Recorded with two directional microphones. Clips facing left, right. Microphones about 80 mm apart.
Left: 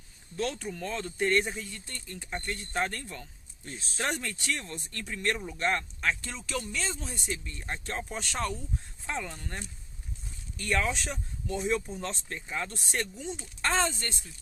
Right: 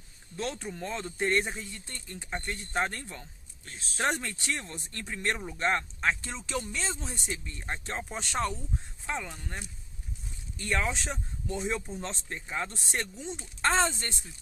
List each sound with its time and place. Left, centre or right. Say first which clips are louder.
0.3 s speech: left 2 dB; right
9.0 s speech: even; centre
10.6 s speech: left 1 dB; right